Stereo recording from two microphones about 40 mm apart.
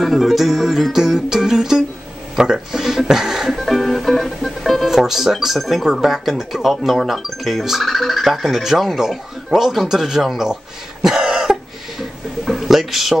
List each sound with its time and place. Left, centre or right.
0.0 s music: centre
2.3 s speech: centre
3.6 s music: centre
4.8 s speech: centre
5.9 s music: centre
9.1 s speech: centre
12.0 s a sound: centre